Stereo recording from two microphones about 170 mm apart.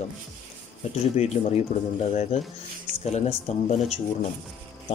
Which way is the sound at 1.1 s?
40° left (ahead or behind).